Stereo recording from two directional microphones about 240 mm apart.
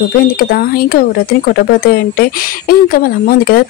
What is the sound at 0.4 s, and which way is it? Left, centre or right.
Speech, left.